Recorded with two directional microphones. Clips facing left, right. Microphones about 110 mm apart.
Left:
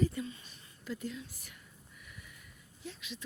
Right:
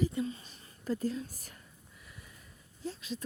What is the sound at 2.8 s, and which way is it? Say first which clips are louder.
Speech: right 7 dB; 40° right (ahead or behind).